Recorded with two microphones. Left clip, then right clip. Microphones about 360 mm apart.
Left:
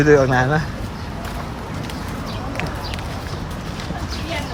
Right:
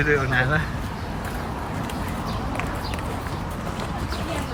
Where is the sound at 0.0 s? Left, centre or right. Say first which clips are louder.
Left 7 dB; centre.